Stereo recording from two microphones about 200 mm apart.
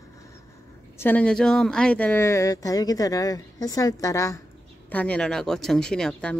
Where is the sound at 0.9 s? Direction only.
10° left (ahead or behind).